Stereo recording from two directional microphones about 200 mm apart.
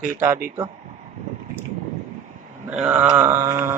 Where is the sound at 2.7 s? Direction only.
5° right (ahead or behind).